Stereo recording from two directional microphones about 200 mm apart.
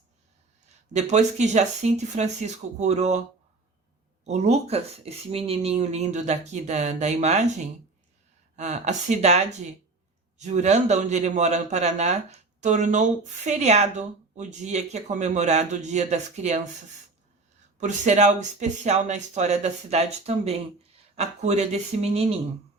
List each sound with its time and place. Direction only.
0.9 s a man's voice: 35° right (ahead or behind)
8.5 s a man's voice: 35° right (ahead or behind)
17.7 s a man's voice: 35° right (ahead or behind)